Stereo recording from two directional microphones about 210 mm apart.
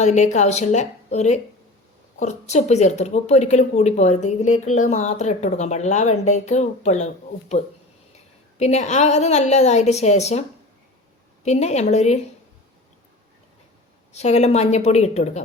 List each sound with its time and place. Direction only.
0.0 s a woman's voice: 35° left (ahead or behind)
11.4 s a woman's voice: 30° left (ahead or behind)
14.1 s a woman's voice: 30° left (ahead or behind)